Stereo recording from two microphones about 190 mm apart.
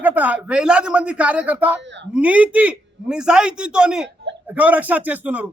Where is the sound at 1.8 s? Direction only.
70° right (ahead or behind).